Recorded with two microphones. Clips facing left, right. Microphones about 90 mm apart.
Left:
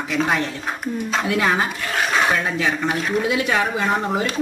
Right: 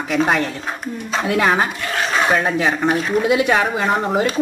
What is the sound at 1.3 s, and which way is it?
Speech, 50° right (ahead or behind).